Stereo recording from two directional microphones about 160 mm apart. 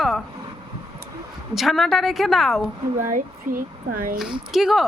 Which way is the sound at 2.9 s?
55° right (ahead or behind).